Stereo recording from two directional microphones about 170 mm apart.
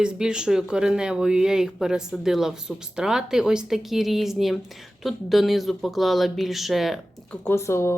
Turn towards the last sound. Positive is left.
turn(degrees=15)  # may be behind; listen again after turning